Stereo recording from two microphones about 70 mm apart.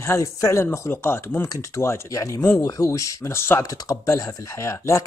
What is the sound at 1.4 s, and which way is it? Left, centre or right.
Speech, left.